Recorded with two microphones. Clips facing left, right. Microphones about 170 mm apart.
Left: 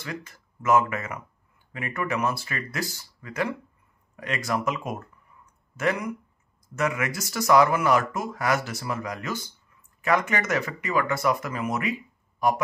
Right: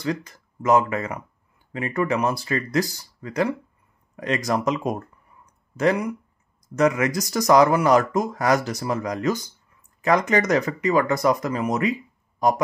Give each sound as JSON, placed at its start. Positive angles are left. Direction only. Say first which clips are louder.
{"t": 0.0, "sound": "speech", "louder": "right 9 dB", "side_deg": -35}
{"t": 5.4, "sound": "a sound", "louder": "right 6 dB", "side_deg": -35}
{"t": 6.7, "sound": "speech", "louder": "right 7 dB", "side_deg": -35}